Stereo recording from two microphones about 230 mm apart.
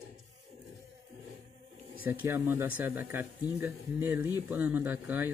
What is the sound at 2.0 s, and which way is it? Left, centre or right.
Speech, centre.